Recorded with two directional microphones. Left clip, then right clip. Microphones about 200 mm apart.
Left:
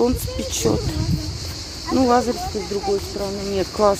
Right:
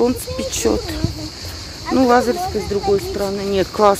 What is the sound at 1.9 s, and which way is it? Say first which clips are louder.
Speech: right 3 dB; 15° right (ahead or behind).